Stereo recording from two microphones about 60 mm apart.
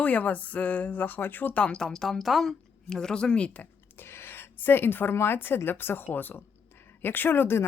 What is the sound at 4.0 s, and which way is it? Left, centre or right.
A woman's voice, left.